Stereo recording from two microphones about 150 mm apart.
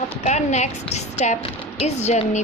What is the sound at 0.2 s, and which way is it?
A woman's voice, 50° left (ahead or behind).